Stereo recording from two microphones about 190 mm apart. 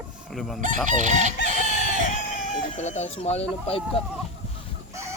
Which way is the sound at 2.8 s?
35° left (ahead or behind).